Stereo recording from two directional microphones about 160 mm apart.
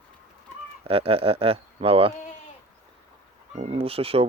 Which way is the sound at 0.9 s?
35° right (ahead or behind).